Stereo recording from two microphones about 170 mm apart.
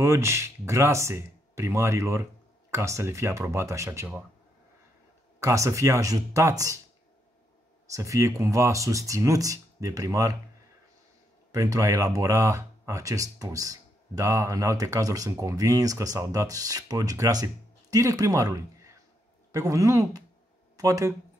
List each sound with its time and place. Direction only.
0.0 s speech: 15° right (ahead or behind)
5.4 s speech: 15° right (ahead or behind)
7.9 s speech: 20° right (ahead or behind)
11.5 s speech: 20° right (ahead or behind)